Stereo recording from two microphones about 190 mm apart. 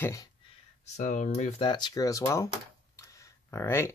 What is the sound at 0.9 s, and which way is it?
Speech, 40° left (ahead or behind).